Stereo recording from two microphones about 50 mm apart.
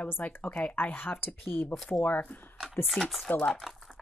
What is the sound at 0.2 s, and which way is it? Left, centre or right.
Speech, left.